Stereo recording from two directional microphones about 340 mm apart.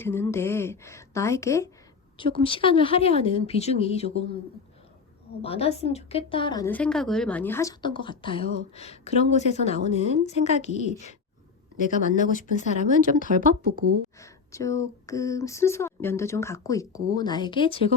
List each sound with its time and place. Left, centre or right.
0.0 s speech: centre
5.4 s a woman's voice: centre
13.2 s speech: right
14.2 s speech: centre